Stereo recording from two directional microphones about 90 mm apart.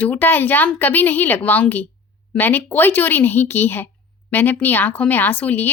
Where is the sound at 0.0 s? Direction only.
20° left (ahead or behind).